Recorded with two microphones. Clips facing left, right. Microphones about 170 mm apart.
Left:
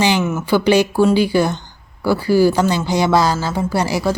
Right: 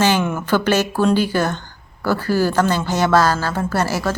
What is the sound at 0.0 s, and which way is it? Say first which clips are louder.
Speech: left 1 dB; 10° left (ahead or behind).